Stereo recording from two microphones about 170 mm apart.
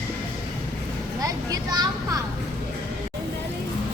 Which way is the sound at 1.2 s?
20° right (ahead or behind).